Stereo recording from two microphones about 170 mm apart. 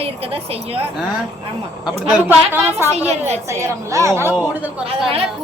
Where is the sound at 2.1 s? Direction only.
10° right (ahead or behind).